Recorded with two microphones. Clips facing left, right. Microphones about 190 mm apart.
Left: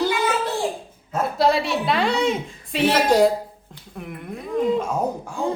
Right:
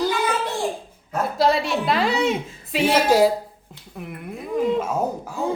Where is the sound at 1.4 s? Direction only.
Centre (ahead or behind).